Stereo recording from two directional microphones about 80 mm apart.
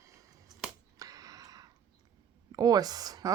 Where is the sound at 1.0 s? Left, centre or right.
Right.